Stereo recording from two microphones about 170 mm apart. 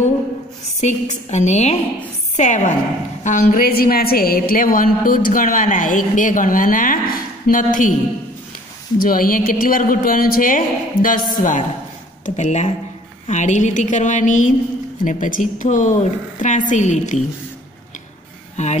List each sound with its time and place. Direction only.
0.7 s a woman's voice: 45° left (ahead or behind)
8.9 s a woman's voice: 55° left (ahead or behind)
18.6 s a woman's voice: 45° left (ahead or behind)